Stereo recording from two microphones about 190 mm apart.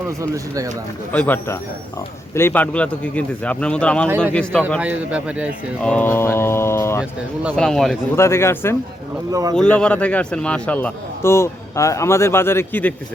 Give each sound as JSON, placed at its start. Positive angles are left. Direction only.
{"t": 0.1, "sound": "speech", "side_deg": -15}
{"t": 1.1, "sound": "a man's voice", "side_deg": 10}
{"t": 4.8, "sound": "speech", "side_deg": -5}
{"t": 5.8, "sound": "a man's voice", "side_deg": 5}
{"t": 7.5, "sound": "a man's voice", "side_deg": 5}
{"t": 8.1, "sound": "a man's voice", "side_deg": 15}
{"t": 9.3, "sound": "speech", "side_deg": -20}
{"t": 9.6, "sound": "a man's voice", "side_deg": 5}